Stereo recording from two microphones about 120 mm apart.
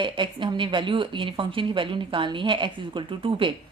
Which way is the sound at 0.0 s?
40° right (ahead or behind).